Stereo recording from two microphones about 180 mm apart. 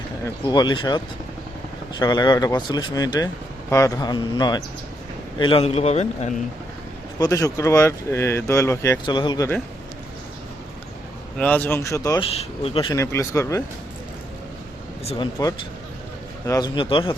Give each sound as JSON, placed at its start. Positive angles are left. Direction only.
{"t": 0.4, "sound": "speech", "side_deg": 25}
{"t": 7.2, "sound": "speech", "side_deg": 20}
{"t": 11.3, "sound": "speech", "side_deg": 10}
{"t": 12.2, "sound": "speech", "side_deg": 35}
{"t": 12.9, "sound": "speech", "side_deg": 15}
{"t": 15.0, "sound": "speech", "side_deg": 30}
{"t": 16.5, "sound": "speech", "side_deg": 20}